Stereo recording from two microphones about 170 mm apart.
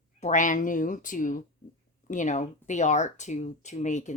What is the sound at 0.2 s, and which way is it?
Speech, 45° left (ahead or behind).